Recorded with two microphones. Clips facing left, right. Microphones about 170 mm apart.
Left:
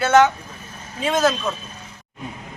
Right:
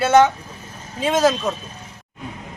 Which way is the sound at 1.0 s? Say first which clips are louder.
Right 2 dB; 20° right (ahead or behind).